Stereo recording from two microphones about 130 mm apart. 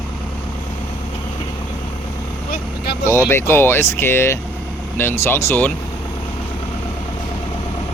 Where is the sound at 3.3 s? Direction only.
20° left (ahead or behind).